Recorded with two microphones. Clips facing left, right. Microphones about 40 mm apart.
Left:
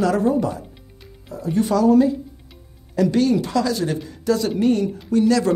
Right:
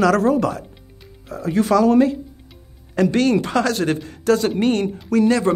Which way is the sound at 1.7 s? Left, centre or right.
Right.